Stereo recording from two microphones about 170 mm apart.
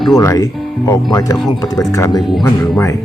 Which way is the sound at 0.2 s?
20° left (ahead or behind).